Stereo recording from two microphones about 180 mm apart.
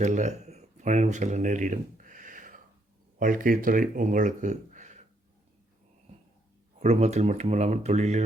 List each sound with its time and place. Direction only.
0.0 s a sound: 40° right (ahead or behind)
3.2 s speech: 50° right (ahead or behind)
6.7 s speech: 35° right (ahead or behind)